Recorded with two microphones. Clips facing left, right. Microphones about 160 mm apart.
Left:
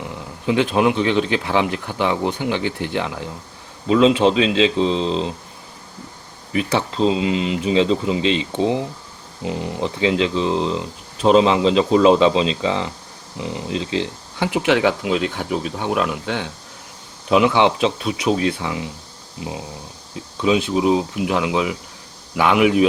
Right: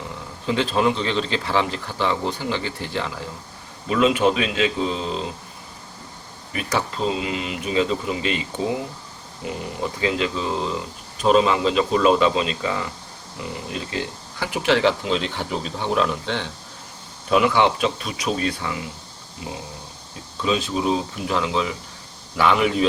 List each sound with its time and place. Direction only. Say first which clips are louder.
0.4 s speech: left 3 dB; 15° left (ahead or behind)
6.5 s speech: left 4 dB; 25° left (ahead or behind)
17.2 s speech: left 3 dB; 20° left (ahead or behind)
20.4 s speech: left 5 dB; 15° left (ahead or behind)